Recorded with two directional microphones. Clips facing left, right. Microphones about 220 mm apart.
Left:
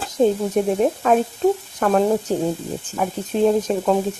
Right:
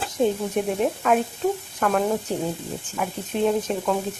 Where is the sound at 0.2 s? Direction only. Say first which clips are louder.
Left 5 dB; 40° left (ahead or behind).